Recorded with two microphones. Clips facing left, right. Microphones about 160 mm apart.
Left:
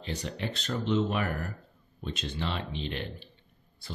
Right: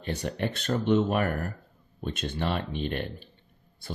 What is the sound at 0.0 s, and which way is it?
Speech, 55° right (ahead or behind).